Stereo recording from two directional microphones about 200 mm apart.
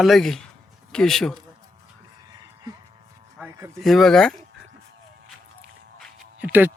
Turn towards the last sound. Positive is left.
turn(degrees=-10)  # may be behind; listen again after turning